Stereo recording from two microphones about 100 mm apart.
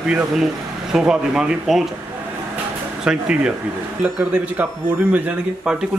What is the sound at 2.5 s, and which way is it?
Music, 10° right (ahead or behind).